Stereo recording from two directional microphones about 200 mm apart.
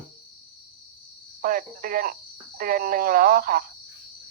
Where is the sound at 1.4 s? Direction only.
45° right (ahead or behind).